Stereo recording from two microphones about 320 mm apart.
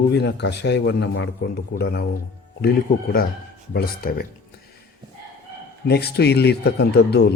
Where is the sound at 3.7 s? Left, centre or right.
Left.